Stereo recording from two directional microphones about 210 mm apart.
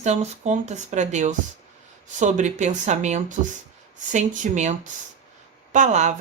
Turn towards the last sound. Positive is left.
turn(degrees=-35)  # may be behind; listen again after turning